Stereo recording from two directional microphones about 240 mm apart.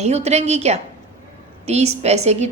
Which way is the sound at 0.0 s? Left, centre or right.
Right.